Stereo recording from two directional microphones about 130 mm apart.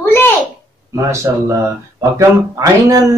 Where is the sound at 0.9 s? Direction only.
25° right (ahead or behind).